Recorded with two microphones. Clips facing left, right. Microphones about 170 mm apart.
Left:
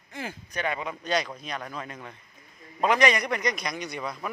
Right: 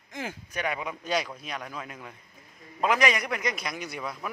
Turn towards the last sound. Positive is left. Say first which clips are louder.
# left 2 dB
turn(degrees=-5)  # may be behind; listen again after turning